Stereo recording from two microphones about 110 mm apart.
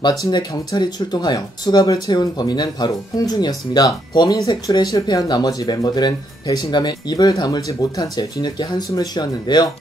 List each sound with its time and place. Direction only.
0.2 s speech: 35° left (ahead or behind)